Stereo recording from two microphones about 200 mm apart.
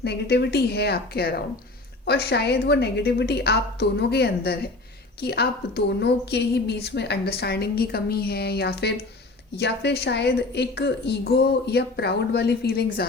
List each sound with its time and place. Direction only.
0.0 s a woman's voice: 55° left (ahead or behind)